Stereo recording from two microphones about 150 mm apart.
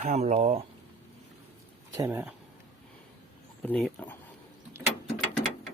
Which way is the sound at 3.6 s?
10° left (ahead or behind).